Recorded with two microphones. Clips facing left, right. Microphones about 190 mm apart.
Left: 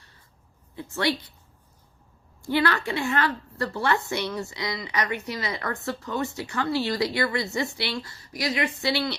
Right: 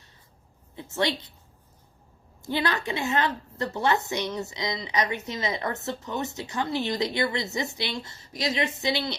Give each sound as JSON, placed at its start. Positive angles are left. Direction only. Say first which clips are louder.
{"t": 0.9, "sound": "a woman's voice", "louder": "left 1 dB", "side_deg": -20}
{"t": 2.4, "sound": "a woman's voice", "louder": "left 3 dB", "side_deg": -20}